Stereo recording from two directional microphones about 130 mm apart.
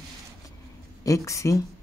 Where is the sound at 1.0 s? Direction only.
25° left (ahead or behind).